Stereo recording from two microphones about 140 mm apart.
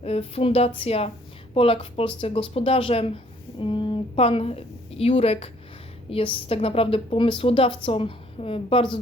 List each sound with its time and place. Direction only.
0.0 s a woman's voice: 45° left (ahead or behind)